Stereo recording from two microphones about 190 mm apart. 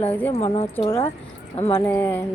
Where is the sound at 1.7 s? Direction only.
10° left (ahead or behind).